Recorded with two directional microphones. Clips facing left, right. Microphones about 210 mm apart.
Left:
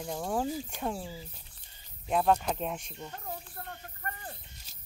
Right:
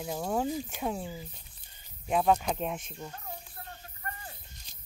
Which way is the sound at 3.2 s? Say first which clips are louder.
Left 3 dB; 50° left (ahead or behind).